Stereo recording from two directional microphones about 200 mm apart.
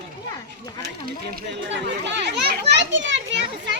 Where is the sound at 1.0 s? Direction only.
55° right (ahead or behind).